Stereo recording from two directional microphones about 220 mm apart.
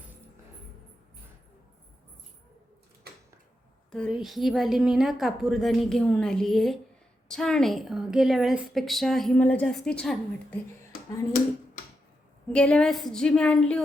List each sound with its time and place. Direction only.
3.9 s a woman's voice: centre (ahead or behind)
11.3 s speech: 40° left (ahead or behind)
12.5 s a woman's voice: 5° left (ahead or behind)